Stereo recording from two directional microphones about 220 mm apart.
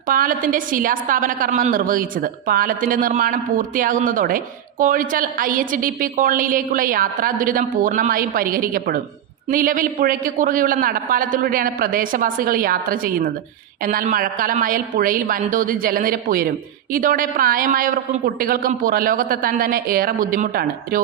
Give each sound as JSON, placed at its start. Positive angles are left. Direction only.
{"t": 0.1, "sound": "a woman's voice", "side_deg": -40}